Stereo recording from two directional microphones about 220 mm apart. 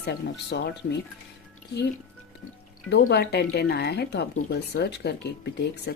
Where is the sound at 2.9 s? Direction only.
50° left (ahead or behind).